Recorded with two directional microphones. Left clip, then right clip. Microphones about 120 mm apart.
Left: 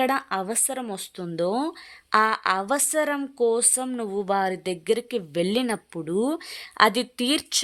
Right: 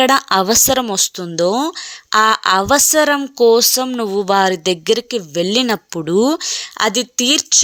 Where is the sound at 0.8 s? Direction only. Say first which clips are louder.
Right 14 dB; 40° right (ahead or behind).